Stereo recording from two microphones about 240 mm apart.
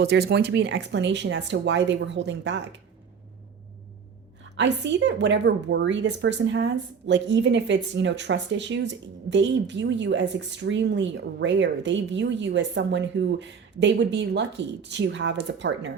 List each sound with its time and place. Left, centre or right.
0.0 s a woman's voice: right
4.5 s a woman's voice: right